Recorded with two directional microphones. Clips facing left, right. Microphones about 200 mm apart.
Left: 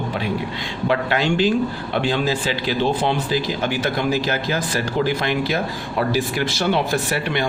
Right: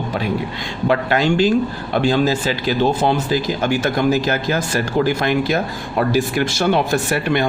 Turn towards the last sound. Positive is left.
turn(degrees=-50)  # may be behind; listen again after turning